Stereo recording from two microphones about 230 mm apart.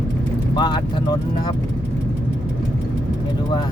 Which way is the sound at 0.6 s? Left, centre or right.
Centre.